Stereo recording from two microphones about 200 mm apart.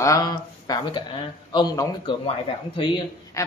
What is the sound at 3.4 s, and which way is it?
Speech, 15° left (ahead or behind).